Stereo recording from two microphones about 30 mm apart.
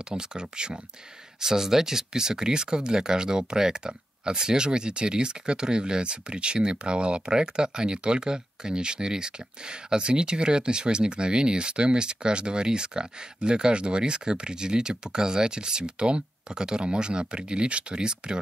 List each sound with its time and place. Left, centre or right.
0.1 s speech: right
1.4 s speech: centre